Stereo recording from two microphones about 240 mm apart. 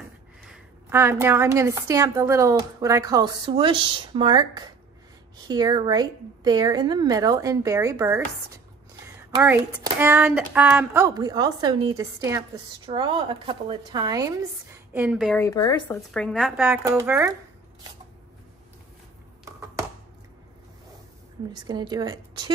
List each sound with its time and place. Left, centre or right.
0.4 s a woman's voice: centre
9.0 s a sound: centre
9.9 s a woman's voice: centre
15.4 s speech: centre
15.9 s speech: centre
21.6 s a woman's voice: centre